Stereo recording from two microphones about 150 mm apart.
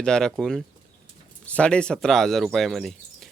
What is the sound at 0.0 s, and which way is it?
Speech, 5° left (ahead or behind).